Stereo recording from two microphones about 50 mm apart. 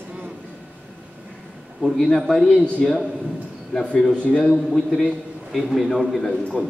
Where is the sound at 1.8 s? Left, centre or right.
Centre.